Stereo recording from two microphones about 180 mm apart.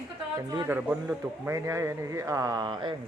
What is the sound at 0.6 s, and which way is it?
A man's voice, 10° right (ahead or behind).